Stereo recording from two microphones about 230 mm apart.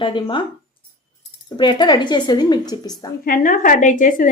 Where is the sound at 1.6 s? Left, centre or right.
Centre.